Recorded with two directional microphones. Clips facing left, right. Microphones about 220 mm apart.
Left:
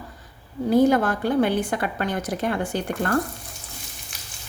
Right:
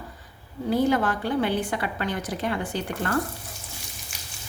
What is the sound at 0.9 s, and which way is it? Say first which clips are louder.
Stir: left 3 dB; 45° left (ahead or behind).